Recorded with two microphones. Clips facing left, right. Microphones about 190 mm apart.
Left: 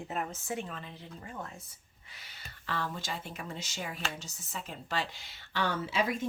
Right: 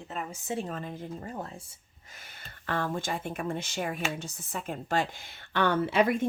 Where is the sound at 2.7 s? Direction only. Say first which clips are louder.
Right 6 dB; 50° right (ahead or behind).